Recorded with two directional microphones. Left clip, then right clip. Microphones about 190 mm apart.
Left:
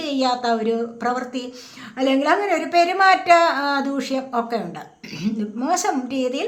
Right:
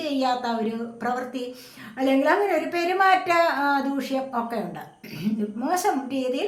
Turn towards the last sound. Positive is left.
turn(degrees=35)  # may be behind; listen again after turning